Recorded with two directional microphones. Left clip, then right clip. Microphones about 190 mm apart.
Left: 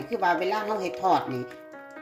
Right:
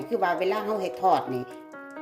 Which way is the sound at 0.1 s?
5° right (ahead or behind).